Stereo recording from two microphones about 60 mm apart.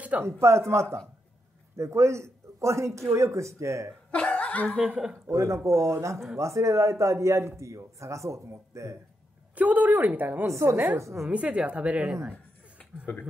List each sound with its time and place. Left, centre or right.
0.2 s a man's voice: right
4.1 s cough: left
4.7 s a woman's voice: right
5.3 s a man's voice: right
9.6 s a woman's voice: right
10.4 s a man's voice: right
11.2 s a woman's voice: right